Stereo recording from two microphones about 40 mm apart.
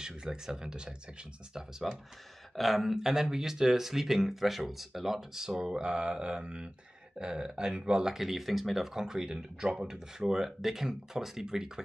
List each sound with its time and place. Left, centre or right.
0.0 s speech: centre
2.5 s speech: centre